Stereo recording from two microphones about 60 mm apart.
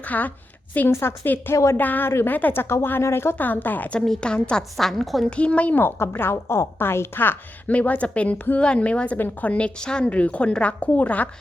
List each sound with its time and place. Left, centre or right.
0.0 s a woman's voice: left
0.9 s a woman's voice: left
2.0 s a woman's voice: left
3.3 s a woman's voice: left
4.0 s a woman's voice: centre
5.3 s a woman's voice: centre
5.8 s a woman's voice: left
6.3 s a woman's voice: left
7.7 s a woman's voice: left